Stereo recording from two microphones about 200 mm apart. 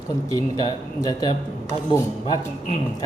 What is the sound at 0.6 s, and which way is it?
A man's voice, 20° left (ahead or behind).